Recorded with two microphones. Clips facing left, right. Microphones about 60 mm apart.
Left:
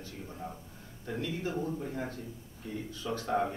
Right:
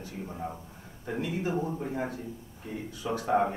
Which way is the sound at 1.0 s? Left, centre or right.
Centre.